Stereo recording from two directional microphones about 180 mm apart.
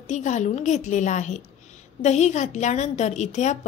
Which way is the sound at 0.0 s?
40° left (ahead or behind).